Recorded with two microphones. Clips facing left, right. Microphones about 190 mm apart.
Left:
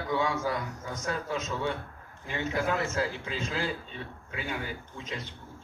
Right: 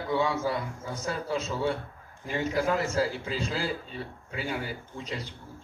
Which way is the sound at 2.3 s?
40° right (ahead or behind).